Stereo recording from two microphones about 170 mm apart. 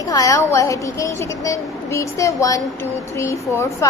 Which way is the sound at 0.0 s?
20° left (ahead or behind).